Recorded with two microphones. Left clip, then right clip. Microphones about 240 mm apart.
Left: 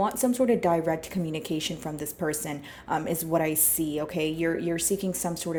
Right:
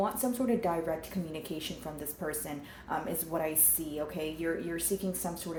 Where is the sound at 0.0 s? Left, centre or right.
Left.